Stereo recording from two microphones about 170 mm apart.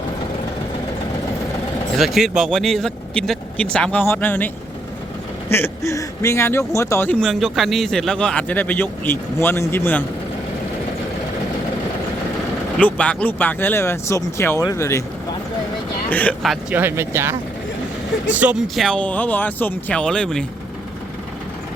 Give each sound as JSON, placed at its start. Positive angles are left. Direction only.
{"t": 2.0, "sound": "speech", "side_deg": 0}
{"t": 12.8, "sound": "speech", "side_deg": 5}